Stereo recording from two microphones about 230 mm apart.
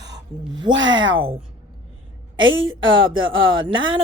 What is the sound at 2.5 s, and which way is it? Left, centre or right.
Speech, right.